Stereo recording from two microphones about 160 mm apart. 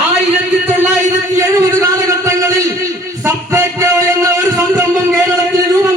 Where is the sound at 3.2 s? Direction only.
20° right (ahead or behind).